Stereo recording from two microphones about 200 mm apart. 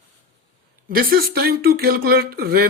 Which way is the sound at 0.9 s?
50° right (ahead or behind).